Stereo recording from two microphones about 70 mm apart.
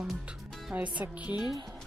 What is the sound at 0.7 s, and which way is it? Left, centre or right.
Music, centre.